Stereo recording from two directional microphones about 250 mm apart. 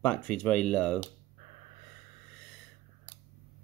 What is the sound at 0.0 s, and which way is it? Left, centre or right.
Speech, centre.